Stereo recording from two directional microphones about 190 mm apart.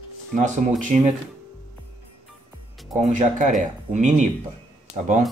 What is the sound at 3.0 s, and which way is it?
Speech, 40° right (ahead or behind).